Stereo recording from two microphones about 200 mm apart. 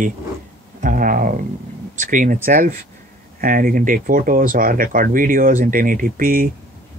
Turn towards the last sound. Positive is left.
turn(degrees=-45)  # may be behind; listen again after turning